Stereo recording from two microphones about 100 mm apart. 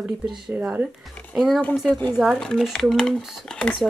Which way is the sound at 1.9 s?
15° left (ahead or behind).